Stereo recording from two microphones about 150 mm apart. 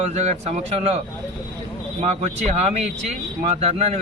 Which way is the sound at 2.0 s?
50° right (ahead or behind).